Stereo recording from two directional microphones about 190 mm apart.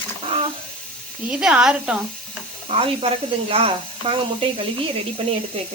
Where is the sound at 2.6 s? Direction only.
30° right (ahead or behind).